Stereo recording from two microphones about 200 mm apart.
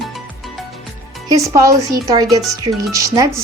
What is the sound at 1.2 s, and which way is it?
Speech, 15° right (ahead or behind).